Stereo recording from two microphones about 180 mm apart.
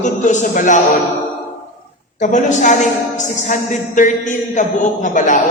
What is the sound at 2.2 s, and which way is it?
A woman's voice, 45° left (ahead or behind).